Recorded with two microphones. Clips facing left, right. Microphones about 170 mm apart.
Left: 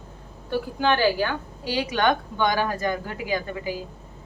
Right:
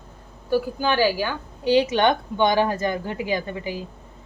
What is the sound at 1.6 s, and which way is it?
A woman's voice, 20° right (ahead or behind).